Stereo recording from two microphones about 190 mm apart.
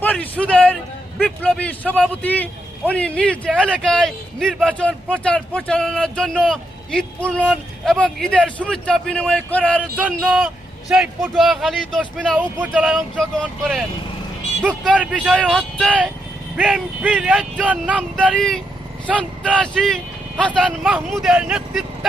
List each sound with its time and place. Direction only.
0.0 s a man's voice: 10° left (ahead or behind)
10.2 s speech: 5° right (ahead or behind)
15.3 s speech: 5° left (ahead or behind)